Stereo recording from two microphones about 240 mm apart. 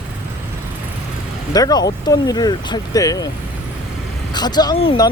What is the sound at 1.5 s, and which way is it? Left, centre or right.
Speech, centre.